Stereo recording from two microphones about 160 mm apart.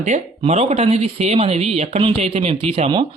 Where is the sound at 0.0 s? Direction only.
45° right (ahead or behind).